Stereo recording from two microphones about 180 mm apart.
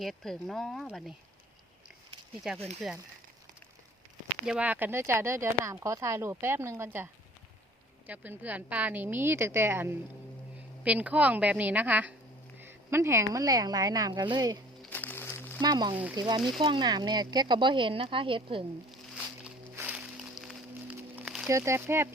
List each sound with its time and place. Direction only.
0.0 s speech: centre (ahead or behind)
2.8 s speech: centre (ahead or behind)
4.4 s speech: 5° right (ahead or behind); by 14.6 s 25° right (ahead or behind)
14.8 s music: 10° left (ahead or behind)
15.6 s speech: 25° right (ahead or behind)
19.7 s music: 10° right (ahead or behind)
21.5 s speech: 15° right (ahead or behind)